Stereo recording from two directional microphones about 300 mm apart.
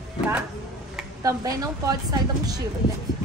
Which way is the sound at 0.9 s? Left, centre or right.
Centre.